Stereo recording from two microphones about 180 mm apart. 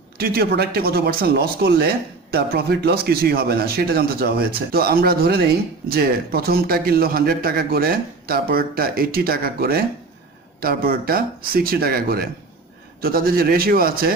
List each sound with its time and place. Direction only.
0.2 s a man's voice: 60° right (ahead or behind)